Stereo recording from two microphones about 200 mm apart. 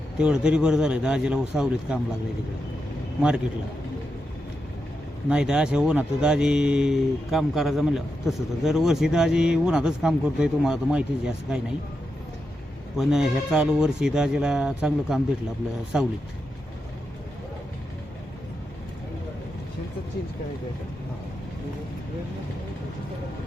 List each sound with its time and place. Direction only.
0.2 s speech: 5° right (ahead or behind)
3.2 s speech: 5° right (ahead or behind)
5.3 s speech: 5° right (ahead or behind)
13.0 s speech: centre (ahead or behind)